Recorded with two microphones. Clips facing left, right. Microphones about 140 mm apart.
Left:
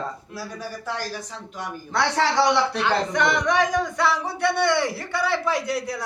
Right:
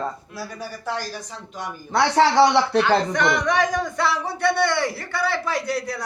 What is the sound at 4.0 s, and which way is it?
A man's voice, 15° left (ahead or behind).